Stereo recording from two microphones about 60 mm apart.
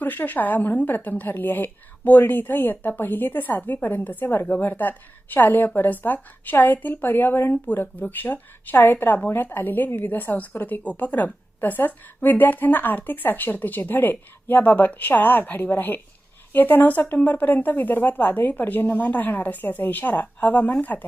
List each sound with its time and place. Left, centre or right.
0.0 s a woman's voice: left